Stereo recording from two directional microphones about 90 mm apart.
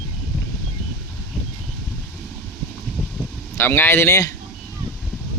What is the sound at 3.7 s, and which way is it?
Speech, 25° left (ahead or behind).